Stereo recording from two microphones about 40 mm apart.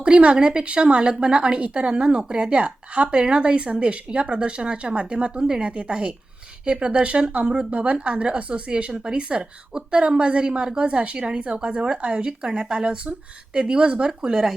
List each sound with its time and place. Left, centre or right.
0.0 s speech: right
7.7 s speech: right
14.1 s speech: centre